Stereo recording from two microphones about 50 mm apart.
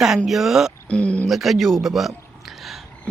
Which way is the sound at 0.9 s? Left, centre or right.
Left.